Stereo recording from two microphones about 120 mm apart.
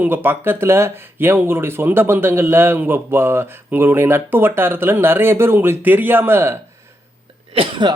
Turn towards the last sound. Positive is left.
turn(degrees=-45)  # may be behind; listen again after turning